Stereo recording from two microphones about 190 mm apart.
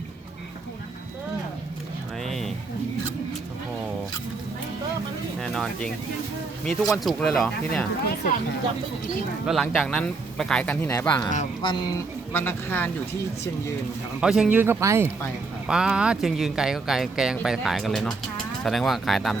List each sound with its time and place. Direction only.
2.2 s a sound: centre (ahead or behind)
5.4 s speech: 5° left (ahead or behind)
9.5 s speech: centre (ahead or behind)
11.6 s speech: 25° left (ahead or behind)
12.3 s speech: 10° left (ahead or behind)
14.2 s speech: 5° right (ahead or behind)
15.6 s speech: 5° right (ahead or behind)